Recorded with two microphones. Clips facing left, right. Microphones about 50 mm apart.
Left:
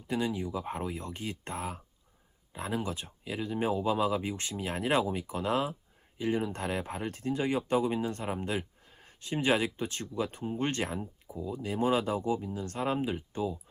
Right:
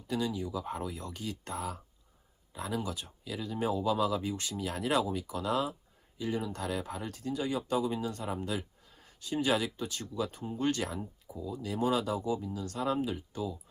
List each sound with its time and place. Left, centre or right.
0.1 s speech: left